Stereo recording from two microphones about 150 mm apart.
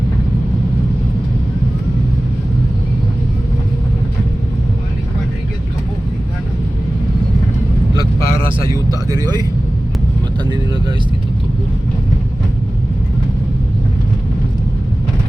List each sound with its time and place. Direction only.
7.9 s vehicle: 35° right (ahead or behind)